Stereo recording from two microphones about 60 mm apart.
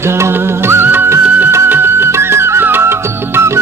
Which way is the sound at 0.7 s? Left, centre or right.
Right.